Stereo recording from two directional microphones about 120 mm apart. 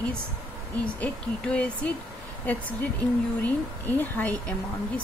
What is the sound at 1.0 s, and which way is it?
Speech, 10° left (ahead or behind).